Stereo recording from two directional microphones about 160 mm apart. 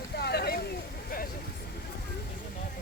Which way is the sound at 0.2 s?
85° left.